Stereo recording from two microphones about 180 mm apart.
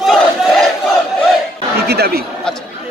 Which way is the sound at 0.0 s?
Centre (ahead or behind).